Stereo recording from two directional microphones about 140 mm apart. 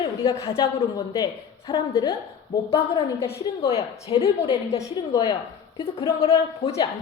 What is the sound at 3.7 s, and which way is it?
Speech, 45° left (ahead or behind).